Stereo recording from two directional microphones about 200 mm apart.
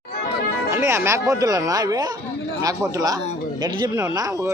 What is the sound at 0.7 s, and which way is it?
Speech, 10° right (ahead or behind).